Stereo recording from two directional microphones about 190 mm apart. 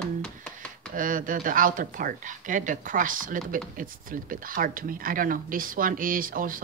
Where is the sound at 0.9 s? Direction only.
45° right (ahead or behind).